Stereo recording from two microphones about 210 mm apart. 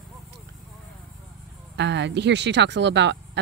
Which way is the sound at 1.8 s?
55° right (ahead or behind).